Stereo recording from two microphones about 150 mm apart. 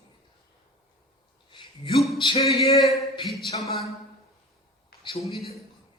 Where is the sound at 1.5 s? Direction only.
30° left (ahead or behind).